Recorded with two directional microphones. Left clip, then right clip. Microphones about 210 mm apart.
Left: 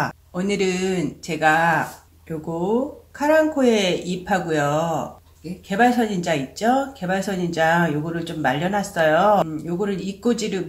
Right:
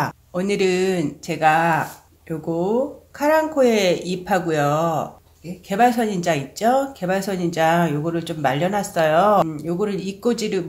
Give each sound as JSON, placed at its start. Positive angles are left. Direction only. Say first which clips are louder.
{"t": 0.0, "sound": "speech", "louder": "right 1 dB", "side_deg": -45}
{"t": 3.2, "sound": "speech", "louder": "right 1 dB", "side_deg": -40}